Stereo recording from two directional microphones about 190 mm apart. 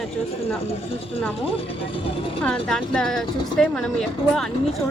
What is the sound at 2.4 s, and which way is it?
A woman's voice, 5° left (ahead or behind).